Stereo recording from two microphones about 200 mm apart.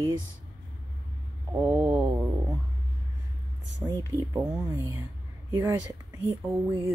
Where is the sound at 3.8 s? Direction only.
20° right (ahead or behind).